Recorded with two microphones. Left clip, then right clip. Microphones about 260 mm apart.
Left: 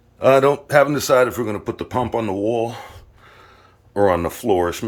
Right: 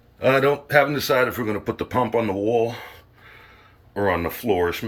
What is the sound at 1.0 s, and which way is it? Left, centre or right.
Speech, left.